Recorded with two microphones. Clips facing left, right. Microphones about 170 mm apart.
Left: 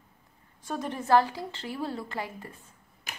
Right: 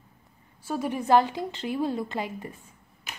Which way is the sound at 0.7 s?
10° right (ahead or behind).